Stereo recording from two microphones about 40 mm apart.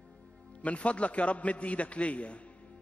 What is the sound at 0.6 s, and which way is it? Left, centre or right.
A man's voice, left.